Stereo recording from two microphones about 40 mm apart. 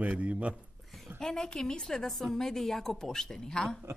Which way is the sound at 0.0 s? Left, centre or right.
Right.